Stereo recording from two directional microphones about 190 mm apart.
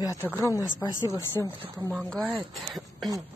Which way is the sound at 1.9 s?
Centre (ahead or behind).